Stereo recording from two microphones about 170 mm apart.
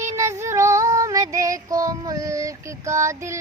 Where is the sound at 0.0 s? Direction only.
15° right (ahead or behind).